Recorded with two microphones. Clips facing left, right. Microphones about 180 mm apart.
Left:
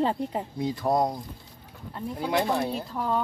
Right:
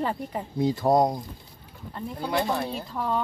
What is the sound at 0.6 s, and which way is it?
Speech, 30° right (ahead or behind).